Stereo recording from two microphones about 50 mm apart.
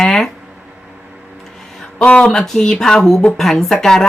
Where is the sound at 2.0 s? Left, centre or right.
Left.